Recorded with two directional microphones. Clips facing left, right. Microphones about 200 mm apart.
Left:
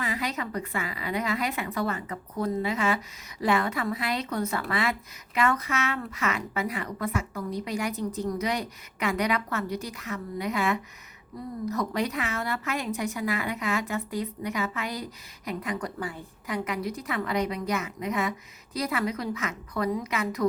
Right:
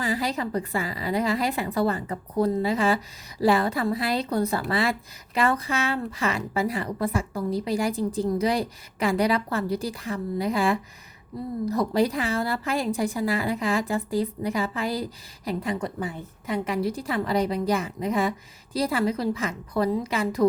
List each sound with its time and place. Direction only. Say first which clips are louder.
0.0 s a woman's voice: right 4 dB; 30° right (ahead or behind)